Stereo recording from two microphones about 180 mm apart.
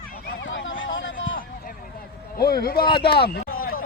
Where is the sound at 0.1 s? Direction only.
70° left (ahead or behind); by 1.1 s 90° left.